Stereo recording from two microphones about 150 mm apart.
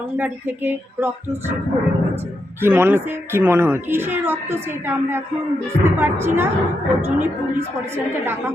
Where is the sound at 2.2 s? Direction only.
15° right (ahead or behind).